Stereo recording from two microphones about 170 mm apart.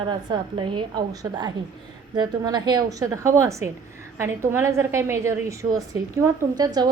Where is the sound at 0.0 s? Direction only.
30° right (ahead or behind).